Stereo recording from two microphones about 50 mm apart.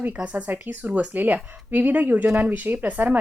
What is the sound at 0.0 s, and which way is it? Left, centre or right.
A woman's voice, right.